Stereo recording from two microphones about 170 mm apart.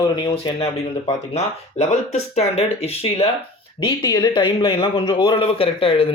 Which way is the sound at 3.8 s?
25° left (ahead or behind).